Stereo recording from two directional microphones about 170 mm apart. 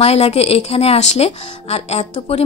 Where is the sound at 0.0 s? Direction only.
35° left (ahead or behind).